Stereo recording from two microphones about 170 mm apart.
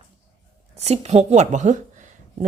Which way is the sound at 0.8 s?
40° right (ahead or behind).